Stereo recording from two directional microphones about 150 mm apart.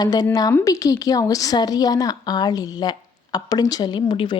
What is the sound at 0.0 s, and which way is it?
Speech, 25° left (ahead or behind).